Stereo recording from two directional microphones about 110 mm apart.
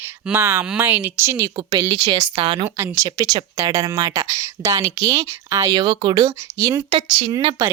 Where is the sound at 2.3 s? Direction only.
50° right (ahead or behind).